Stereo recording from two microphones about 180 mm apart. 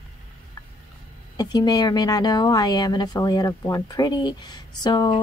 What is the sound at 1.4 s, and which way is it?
Speech, 20° left (ahead or behind).